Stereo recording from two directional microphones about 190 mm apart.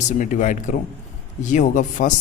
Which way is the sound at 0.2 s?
40° left (ahead or behind).